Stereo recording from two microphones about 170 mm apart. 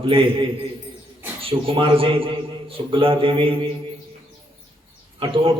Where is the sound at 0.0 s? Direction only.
30° right (ahead or behind).